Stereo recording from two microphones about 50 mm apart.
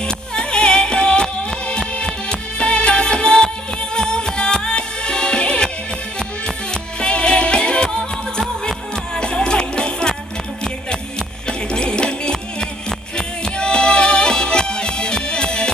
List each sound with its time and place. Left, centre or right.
0.0 s music: centre